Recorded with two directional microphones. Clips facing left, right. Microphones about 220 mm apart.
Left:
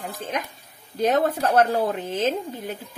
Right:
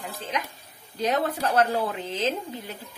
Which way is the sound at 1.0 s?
50° left (ahead or behind).